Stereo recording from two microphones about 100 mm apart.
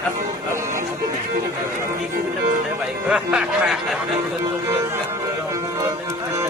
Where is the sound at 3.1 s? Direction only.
5° right (ahead or behind).